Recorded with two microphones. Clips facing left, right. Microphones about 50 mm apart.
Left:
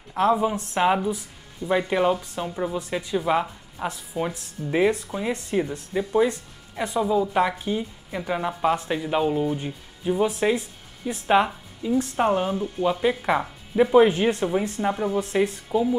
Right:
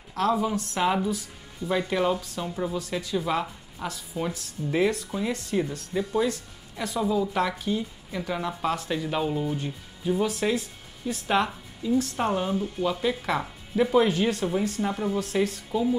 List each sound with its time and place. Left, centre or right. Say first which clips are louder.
0.1 s a woman's voice: left 4 dB; left
13.4 s speech: left 4 dB; centre
13.9 s a woman's voice: left 6 dB; left